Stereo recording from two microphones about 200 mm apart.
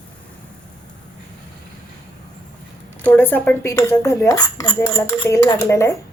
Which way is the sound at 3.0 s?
10° left (ahead or behind).